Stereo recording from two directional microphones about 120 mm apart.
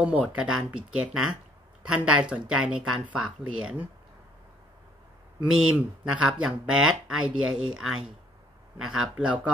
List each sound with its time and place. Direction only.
0.0 s speech: 10° right (ahead or behind)
5.7 s speech: 10° right (ahead or behind)